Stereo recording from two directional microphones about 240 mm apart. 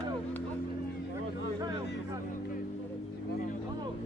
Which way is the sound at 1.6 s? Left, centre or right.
Centre.